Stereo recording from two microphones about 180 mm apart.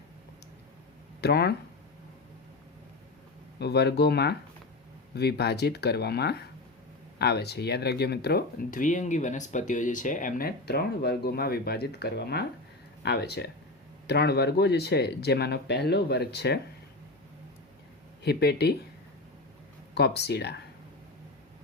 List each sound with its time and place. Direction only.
1.2 s speech: 65° left (ahead or behind)
3.6 s speech: 65° left (ahead or behind)
18.2 s speech: 65° left (ahead or behind)
19.9 s speech: 65° left (ahead or behind)